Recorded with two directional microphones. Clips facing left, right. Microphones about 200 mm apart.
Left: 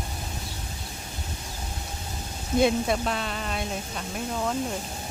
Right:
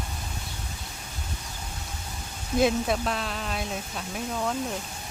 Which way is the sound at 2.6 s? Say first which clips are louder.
Left 1 dB; centre (ahead or behind).